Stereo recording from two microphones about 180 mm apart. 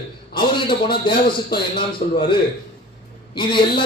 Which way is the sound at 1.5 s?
25° left (ahead or behind).